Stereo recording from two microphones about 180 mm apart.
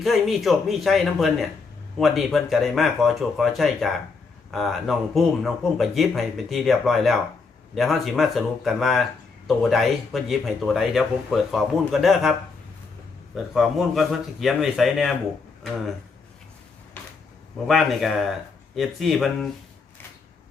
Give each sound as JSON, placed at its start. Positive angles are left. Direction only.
{"t": 0.0, "sound": "speech", "side_deg": 0}
{"t": 17.7, "sound": "speech", "side_deg": 0}